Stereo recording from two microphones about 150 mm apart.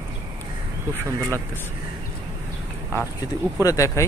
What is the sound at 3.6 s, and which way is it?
Speech, 20° left (ahead or behind).